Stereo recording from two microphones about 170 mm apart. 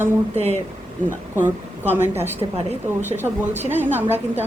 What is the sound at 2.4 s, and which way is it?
Speech, 35° right (ahead or behind).